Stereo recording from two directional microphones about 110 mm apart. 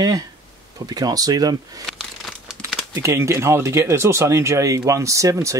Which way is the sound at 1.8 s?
5° left (ahead or behind).